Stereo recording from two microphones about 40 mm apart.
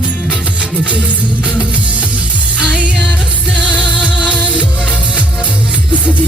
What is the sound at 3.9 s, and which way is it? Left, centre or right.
Music, right.